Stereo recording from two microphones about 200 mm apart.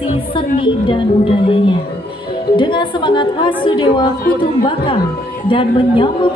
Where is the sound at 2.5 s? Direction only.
25° left (ahead or behind).